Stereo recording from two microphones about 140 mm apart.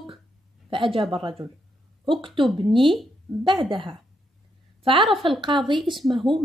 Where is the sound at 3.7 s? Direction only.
35° right (ahead or behind).